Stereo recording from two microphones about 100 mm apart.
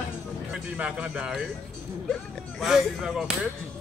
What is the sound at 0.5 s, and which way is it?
Speech, 10° right (ahead or behind).